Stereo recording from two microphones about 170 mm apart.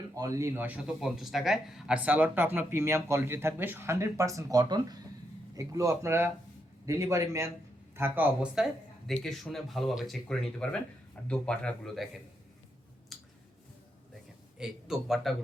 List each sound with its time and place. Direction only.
0.1 s a man's voice: 20° right (ahead or behind); by 12.0 s 5° left (ahead or behind)
13.1 s a sound: centre (ahead or behind)
14.6 s speech: 5° right (ahead or behind)